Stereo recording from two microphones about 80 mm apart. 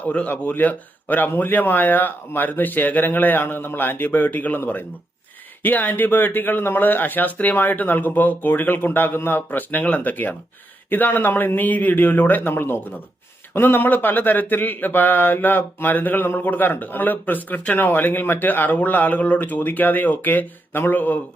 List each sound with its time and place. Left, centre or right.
0.0 s speech: centre